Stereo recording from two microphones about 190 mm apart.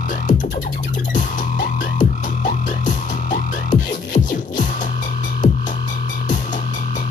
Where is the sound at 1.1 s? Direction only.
45° left (ahead or behind).